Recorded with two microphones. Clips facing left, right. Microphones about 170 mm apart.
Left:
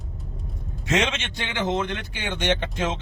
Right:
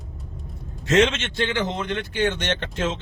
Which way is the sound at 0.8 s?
15° left (ahead or behind).